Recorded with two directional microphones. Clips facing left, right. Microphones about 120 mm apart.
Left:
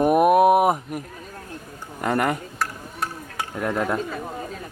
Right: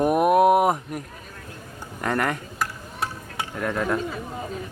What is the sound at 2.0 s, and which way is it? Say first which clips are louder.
Speech: left 2 dB; 10° left (ahead or behind).